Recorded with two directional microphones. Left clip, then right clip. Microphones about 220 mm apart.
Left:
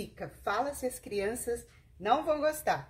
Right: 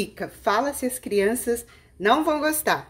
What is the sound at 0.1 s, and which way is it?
Speech, 40° right (ahead or behind).